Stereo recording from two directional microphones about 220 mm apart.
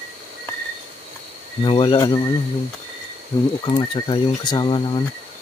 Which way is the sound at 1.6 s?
20° left (ahead or behind).